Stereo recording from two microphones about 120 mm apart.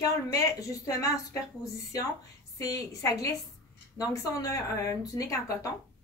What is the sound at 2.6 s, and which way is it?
Speech, 30° left (ahead or behind).